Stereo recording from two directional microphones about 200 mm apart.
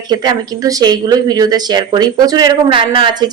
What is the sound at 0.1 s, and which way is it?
Speech, 20° right (ahead or behind).